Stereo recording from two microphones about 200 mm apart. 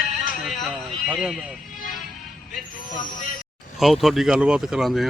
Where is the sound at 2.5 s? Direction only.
40° left (ahead or behind).